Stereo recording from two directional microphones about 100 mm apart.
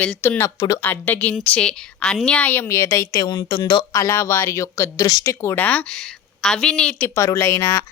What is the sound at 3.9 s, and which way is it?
Speech, 25° left (ahead or behind).